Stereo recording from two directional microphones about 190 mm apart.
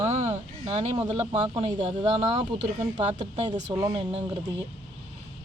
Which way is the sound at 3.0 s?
35° right (ahead or behind).